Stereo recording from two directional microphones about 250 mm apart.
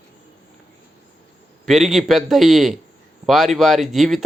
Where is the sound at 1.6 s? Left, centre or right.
Centre.